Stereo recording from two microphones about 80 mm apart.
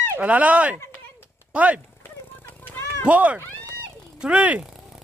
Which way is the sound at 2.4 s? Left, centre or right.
Left.